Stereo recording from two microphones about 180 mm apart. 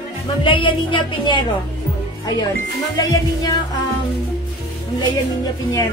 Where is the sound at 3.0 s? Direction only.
20° left (ahead or behind).